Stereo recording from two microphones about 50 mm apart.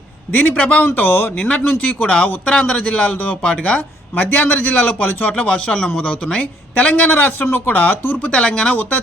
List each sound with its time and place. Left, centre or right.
0.3 s a woman's voice: left
0.9 s speech: left
1.4 s a man's voice: left
8.3 s a man's voice: left